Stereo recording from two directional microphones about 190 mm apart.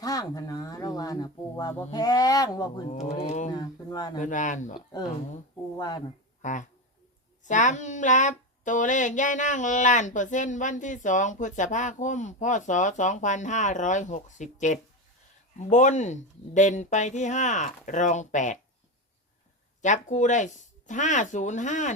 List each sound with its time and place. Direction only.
0.0 s speech: 20° left (ahead or behind)
2.9 s speech: 35° left (ahead or behind)
3.5 s speech: 20° left (ahead or behind)
4.2 s speech: 40° left (ahead or behind)
5.7 s speech: 20° left (ahead or behind)
6.4 s speech: 40° left (ahead or behind)
19.8 s speech: 40° left (ahead or behind)